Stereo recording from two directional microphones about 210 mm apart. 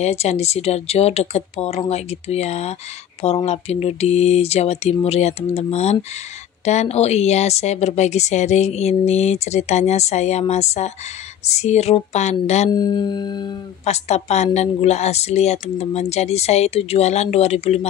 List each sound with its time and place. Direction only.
0.0 s speech: 30° left (ahead or behind)
12.7 s speech: 20° left (ahead or behind)